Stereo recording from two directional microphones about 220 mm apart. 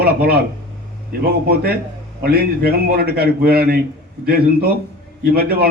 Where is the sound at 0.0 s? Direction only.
45° right (ahead or behind).